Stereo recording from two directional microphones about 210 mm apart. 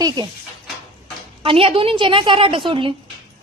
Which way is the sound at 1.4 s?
25° right (ahead or behind).